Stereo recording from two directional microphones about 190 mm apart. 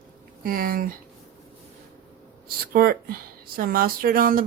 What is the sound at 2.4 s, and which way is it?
Speech, 50° right (ahead or behind).